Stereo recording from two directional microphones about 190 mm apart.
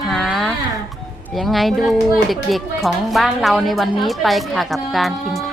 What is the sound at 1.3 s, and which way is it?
Speech, centre (ahead or behind).